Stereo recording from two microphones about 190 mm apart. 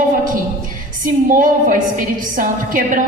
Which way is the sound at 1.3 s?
45° right (ahead or behind).